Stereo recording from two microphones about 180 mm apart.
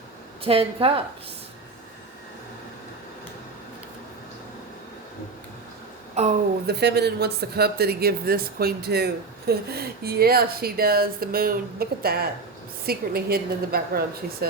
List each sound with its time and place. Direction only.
0.4 s a woman's voice: 30° right (ahead or behind)
6.2 s a woman's voice: 35° right (ahead or behind)
6.7 s speech: 65° right (ahead or behind)